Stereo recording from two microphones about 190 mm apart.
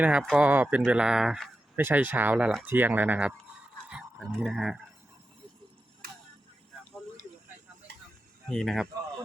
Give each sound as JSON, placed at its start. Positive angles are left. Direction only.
{"t": 0.0, "sound": "speech", "side_deg": -5}
{"t": 3.8, "sound": "a sound", "side_deg": 0}
{"t": 6.0, "sound": "vehicle", "side_deg": -50}
{"t": 8.4, "sound": "speech", "side_deg": 0}